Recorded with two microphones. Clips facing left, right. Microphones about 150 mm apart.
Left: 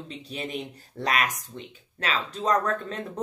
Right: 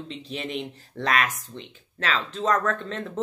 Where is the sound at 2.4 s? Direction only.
35° left (ahead or behind).